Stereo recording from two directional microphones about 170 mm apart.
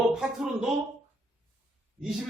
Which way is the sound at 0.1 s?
5° right (ahead or behind).